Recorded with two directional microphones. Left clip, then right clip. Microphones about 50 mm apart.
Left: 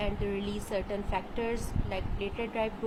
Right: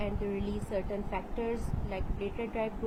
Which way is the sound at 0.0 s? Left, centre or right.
Left.